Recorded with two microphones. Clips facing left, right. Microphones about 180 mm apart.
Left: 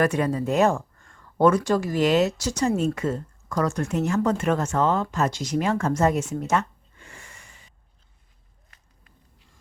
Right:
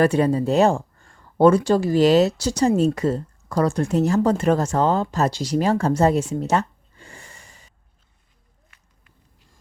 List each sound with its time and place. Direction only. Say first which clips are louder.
0.0 s speech: right 5 dB; 30° right (ahead or behind)